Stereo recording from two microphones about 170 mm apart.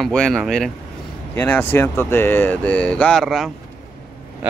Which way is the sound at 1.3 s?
10° left (ahead or behind).